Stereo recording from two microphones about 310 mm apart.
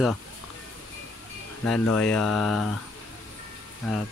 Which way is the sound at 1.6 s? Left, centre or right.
Centre.